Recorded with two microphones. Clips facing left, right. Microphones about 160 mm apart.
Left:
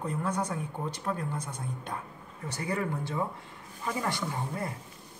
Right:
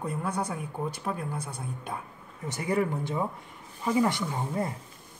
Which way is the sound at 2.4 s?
20° right (ahead or behind).